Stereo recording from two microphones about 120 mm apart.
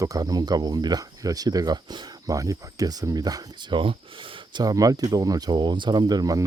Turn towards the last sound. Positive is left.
turn(degrees=-30)  # may be behind; listen again after turning